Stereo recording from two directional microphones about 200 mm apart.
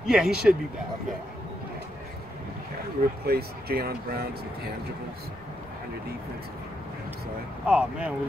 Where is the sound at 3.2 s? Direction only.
50° right (ahead or behind).